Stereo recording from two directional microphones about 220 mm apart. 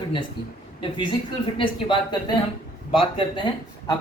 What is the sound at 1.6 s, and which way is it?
A man's voice, 20° left (ahead or behind).